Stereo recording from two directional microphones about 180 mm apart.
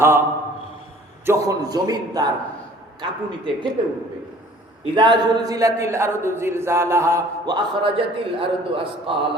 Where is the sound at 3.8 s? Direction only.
30° right (ahead or behind).